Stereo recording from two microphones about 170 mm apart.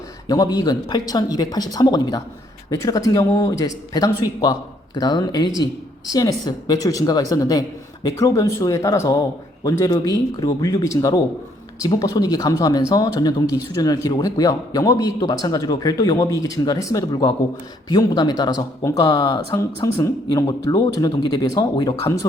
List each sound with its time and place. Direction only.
0.3 s speech: 20° left (ahead or behind)